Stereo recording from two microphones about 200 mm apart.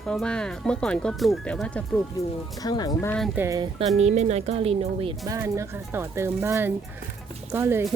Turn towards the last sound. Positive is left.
turn(degrees=-15)  # may be behind; listen again after turning